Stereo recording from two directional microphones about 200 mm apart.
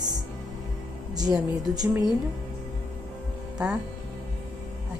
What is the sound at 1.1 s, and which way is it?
Speech, 20° right (ahead or behind).